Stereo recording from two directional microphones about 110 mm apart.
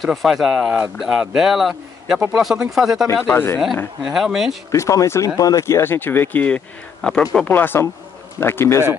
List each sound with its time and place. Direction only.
0.0 s speech: centre (ahead or behind)
3.3 s speech: 15° left (ahead or behind)
4.0 s speech: 5° right (ahead or behind)
4.7 s speech: 25° left (ahead or behind); by 7.2 s 5° left (ahead or behind)
7.3 s speech: 15° left (ahead or behind)